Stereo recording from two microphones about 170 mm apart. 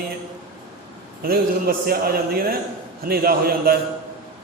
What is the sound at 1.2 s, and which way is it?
A man's voice, 60° right (ahead or behind).